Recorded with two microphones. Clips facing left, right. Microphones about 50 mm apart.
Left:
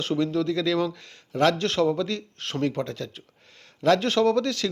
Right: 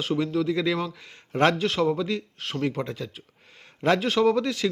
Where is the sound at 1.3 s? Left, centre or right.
Right.